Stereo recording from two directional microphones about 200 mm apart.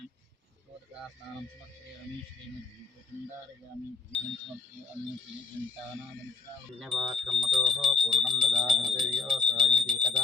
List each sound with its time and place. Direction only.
4.1 s speech: 5° left (ahead or behind)
6.7 s speech: centre (ahead or behind)